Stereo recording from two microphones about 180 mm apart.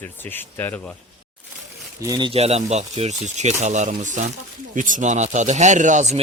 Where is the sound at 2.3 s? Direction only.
35° right (ahead or behind).